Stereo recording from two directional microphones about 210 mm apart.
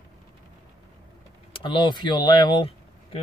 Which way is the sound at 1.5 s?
25° left (ahead or behind).